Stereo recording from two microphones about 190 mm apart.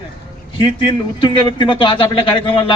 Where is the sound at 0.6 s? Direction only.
25° left (ahead or behind).